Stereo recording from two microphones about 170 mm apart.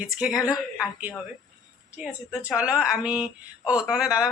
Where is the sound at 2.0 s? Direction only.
5° right (ahead or behind).